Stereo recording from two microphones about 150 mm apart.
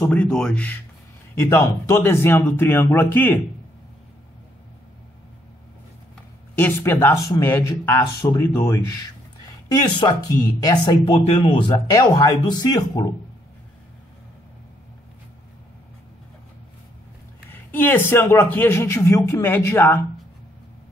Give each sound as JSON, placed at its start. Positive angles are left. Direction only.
{"t": 0.0, "sound": "a man's voice", "side_deg": 10}
{"t": 6.5, "sound": "a man's voice", "side_deg": 15}
{"t": 17.5, "sound": "a man's voice", "side_deg": 15}